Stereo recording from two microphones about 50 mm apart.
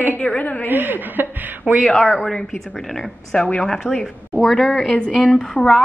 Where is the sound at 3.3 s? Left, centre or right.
Left.